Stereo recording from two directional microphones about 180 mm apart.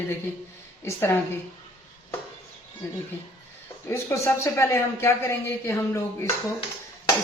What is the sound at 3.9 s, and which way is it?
A man's voice, 15° left (ahead or behind).